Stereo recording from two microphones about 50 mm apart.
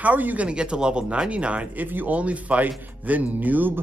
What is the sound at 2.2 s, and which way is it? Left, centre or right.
Speech, right.